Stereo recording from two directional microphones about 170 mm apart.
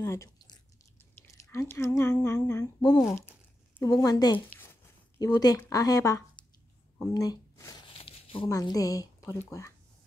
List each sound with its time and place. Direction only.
0.0 s speech: 15° left (ahead or behind)
7.2 s a sound: 20° left (ahead or behind)
8.5 s speech: 20° left (ahead or behind)